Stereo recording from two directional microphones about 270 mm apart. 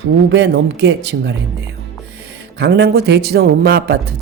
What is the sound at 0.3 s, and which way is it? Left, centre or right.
Speech, right.